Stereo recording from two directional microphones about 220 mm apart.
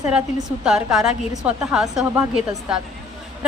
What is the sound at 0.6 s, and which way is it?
A woman's voice, centre (ahead or behind).